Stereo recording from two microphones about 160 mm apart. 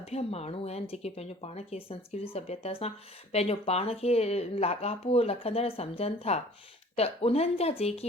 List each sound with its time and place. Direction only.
0.0 s speech: 40° left (ahead or behind)